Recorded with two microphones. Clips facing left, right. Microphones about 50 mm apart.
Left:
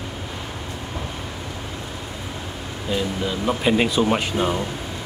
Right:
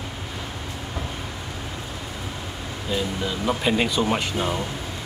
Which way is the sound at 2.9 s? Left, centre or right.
Centre.